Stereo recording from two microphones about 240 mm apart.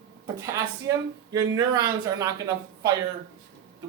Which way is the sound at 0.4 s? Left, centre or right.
Centre.